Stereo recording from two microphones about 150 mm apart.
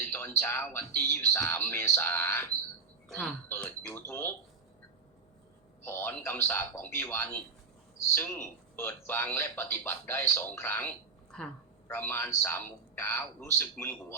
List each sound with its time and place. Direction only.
0.1 s speech: 15° left (ahead or behind)
3.5 s speech: 10° left (ahead or behind)
5.8 s speech: 15° left (ahead or behind)